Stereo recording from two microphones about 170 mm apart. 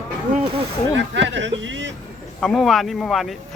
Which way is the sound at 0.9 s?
90° right.